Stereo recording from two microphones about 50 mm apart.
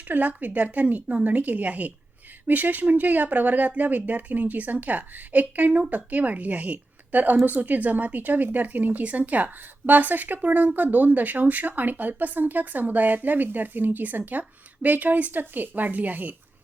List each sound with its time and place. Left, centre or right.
0.1 s speech: right